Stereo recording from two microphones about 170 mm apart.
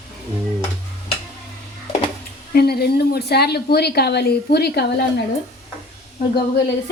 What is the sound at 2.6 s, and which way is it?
Speech, 65° left (ahead or behind).